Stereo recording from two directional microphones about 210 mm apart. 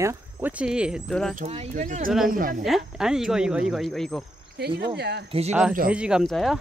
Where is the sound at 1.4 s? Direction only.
30° right (ahead or behind).